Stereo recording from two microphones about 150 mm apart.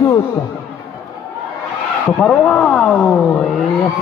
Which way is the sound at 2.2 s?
5° left (ahead or behind).